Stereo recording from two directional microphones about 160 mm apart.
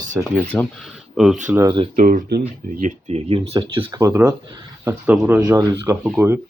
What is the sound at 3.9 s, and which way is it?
Speech, 20° right (ahead or behind).